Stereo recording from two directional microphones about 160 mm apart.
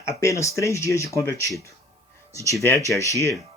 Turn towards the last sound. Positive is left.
turn(degrees=20)  # may be behind; listen again after turning